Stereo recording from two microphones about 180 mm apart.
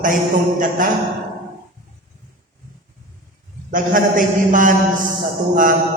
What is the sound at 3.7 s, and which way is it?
A man's voice, 50° right (ahead or behind).